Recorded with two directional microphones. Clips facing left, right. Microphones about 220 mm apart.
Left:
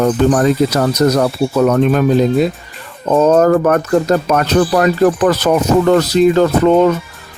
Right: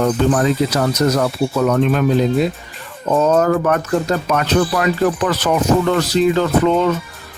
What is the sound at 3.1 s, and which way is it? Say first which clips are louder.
Speech: left 4 dB; 40° left (ahead or behind).